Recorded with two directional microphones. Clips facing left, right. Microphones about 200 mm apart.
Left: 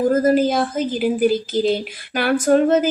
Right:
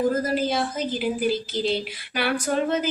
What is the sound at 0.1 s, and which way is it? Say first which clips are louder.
Speech: left 8 dB; 50° left (ahead or behind).